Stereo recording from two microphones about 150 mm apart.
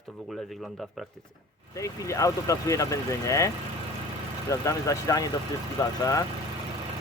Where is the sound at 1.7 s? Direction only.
20° left (ahead or behind).